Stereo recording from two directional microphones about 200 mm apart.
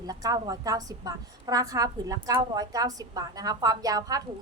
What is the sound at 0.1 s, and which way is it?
A woman's voice, 20° right (ahead or behind).